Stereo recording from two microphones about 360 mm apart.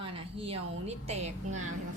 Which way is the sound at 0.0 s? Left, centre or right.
Centre.